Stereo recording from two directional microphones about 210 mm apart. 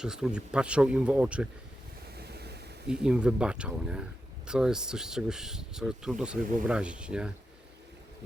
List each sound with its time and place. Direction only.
0.0 s speech: 5° right (ahead or behind)
2.1 s a sound: 50° right (ahead or behind)
2.9 s speech: 5° right (ahead or behind)